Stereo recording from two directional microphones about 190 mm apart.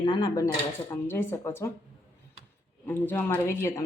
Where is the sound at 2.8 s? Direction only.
10° left (ahead or behind).